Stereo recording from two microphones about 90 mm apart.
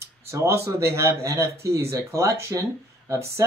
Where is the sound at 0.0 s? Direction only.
35° right (ahead or behind).